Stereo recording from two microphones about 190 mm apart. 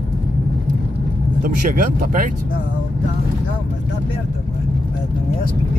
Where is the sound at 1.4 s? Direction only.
45° right (ahead or behind).